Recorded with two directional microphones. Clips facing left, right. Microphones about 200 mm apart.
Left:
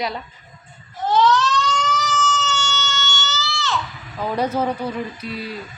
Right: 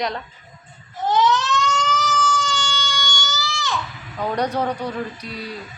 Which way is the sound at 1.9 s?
10° right (ahead or behind).